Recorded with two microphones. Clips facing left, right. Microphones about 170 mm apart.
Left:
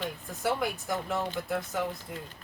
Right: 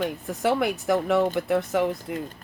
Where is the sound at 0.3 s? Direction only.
80° right.